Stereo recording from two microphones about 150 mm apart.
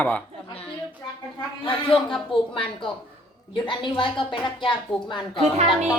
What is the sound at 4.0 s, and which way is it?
Speech, 35° left (ahead or behind).